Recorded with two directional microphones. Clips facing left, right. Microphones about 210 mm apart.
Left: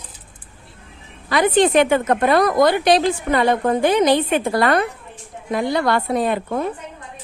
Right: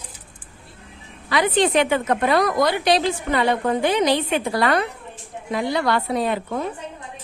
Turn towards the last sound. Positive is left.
turn(degrees=50)  # may be behind; listen again after turning